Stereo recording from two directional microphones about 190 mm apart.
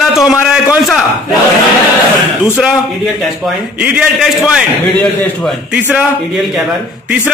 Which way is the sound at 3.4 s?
10° right (ahead or behind).